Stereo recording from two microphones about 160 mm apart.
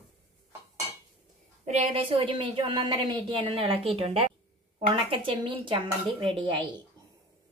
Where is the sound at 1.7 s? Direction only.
40° right (ahead or behind).